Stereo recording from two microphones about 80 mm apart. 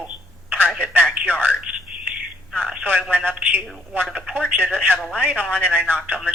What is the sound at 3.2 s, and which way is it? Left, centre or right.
A woman's voice, right.